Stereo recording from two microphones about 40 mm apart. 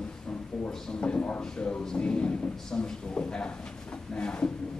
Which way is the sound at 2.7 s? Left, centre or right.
Centre.